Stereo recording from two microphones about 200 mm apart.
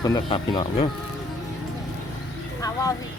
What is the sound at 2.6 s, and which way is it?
Vehicle, 15° left (ahead or behind).